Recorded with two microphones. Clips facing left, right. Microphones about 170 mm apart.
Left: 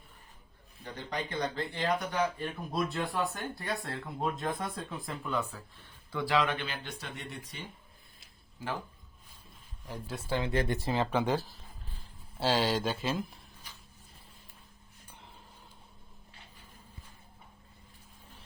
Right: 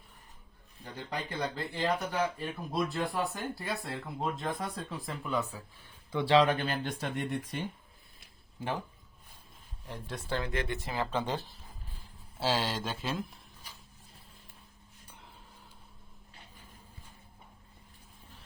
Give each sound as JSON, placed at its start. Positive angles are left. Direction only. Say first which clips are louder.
{"t": 0.9, "sound": "speech", "louder": "left 1 dB", "side_deg": -5}
{"t": 6.1, "sound": "speech", "louder": "right 5 dB", "side_deg": -25}
{"t": 9.8, "sound": "speech", "louder": "left 1 dB", "side_deg": 5}
{"t": 10.5, "sound": "speech", "louder": "left 4 dB", "side_deg": 35}
{"t": 10.9, "sound": "speech", "louder": "left 3 dB", "side_deg": 15}
{"t": 12.4, "sound": "speech", "louder": "left 3 dB", "side_deg": 0}